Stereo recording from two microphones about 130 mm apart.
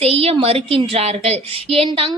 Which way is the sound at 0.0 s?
50° right (ahead or behind).